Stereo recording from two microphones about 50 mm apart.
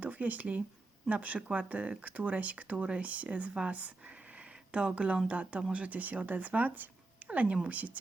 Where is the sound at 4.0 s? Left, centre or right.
Right.